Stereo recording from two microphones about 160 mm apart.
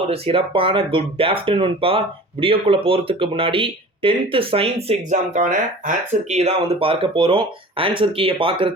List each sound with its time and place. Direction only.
0.1 s speech: 35° right (ahead or behind)